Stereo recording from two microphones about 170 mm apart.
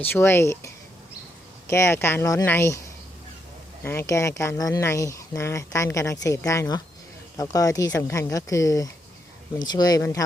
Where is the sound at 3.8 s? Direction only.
15° left (ahead or behind).